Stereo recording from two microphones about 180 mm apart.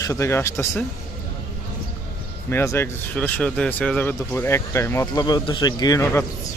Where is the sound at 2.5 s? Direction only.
15° left (ahead or behind).